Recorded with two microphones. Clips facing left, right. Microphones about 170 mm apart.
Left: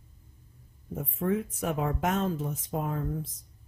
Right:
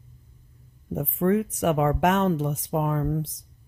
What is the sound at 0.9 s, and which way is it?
Speech, 75° right (ahead or behind).